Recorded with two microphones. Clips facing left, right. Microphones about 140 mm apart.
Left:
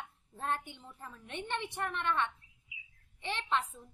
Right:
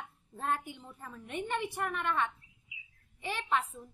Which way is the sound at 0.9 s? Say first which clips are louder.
Right 4 dB; 5° right (ahead or behind).